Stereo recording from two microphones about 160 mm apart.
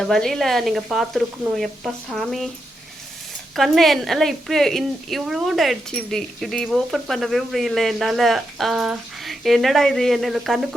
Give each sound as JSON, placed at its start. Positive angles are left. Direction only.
{"t": 0.0, "sound": "speech", "side_deg": 5}
{"t": 3.5, "sound": "speech", "side_deg": 0}